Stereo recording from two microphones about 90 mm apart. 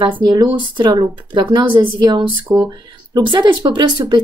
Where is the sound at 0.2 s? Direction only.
50° right (ahead or behind).